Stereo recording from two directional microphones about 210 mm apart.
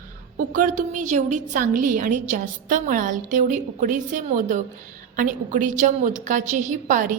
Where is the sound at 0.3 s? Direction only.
40° right (ahead or behind).